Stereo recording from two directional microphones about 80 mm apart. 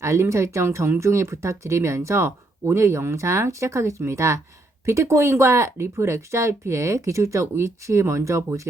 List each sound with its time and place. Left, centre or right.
0.0 s speech: right